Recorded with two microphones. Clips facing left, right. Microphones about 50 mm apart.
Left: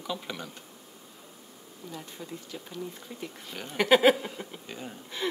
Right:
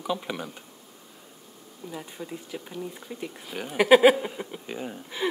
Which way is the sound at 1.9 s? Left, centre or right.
Centre.